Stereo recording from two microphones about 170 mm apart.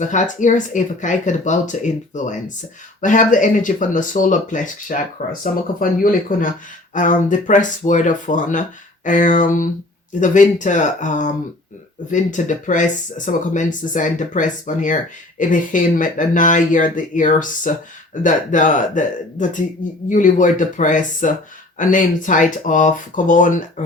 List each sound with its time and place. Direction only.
0.0 s speech: 50° left (ahead or behind)